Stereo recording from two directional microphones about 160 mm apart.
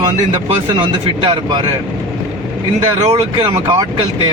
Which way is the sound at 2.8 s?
35° right (ahead or behind).